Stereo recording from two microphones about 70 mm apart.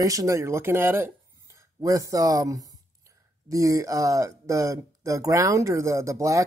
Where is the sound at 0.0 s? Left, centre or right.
Right.